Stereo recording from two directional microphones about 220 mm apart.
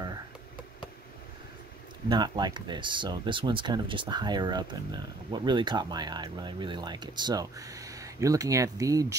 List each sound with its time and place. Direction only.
2.0 s speech: 20° right (ahead or behind)